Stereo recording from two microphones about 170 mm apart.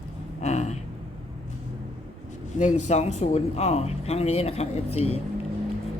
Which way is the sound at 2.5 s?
40° left (ahead or behind).